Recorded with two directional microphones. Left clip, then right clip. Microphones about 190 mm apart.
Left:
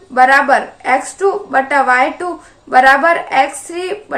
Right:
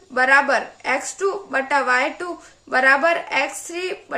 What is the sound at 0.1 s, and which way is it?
A woman's voice, 25° right (ahead or behind).